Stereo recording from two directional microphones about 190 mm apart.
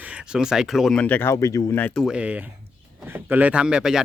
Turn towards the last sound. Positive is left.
turn(degrees=-5)  # may be behind; listen again after turning